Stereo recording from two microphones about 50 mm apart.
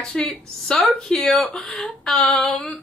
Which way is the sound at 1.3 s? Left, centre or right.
Centre.